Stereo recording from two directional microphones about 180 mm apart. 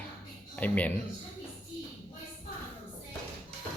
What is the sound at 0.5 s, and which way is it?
Speech, 10° left (ahead or behind).